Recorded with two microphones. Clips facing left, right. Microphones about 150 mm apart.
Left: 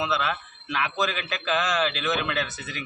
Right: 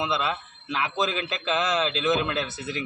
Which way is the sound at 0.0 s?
25° right (ahead or behind).